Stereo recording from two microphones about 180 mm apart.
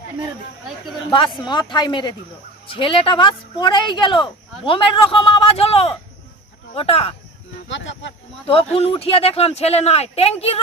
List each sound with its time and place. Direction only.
1.5 s speech: 25° left (ahead or behind)
7.6 s speech: 90° left
8.7 s speech: 35° left (ahead or behind)